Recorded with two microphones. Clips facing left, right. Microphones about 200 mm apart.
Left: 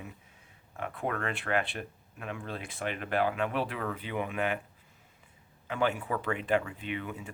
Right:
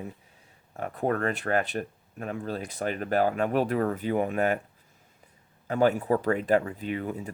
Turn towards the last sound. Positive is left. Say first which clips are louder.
# right 6 dB
turn(degrees=-40)  # may be behind; listen again after turning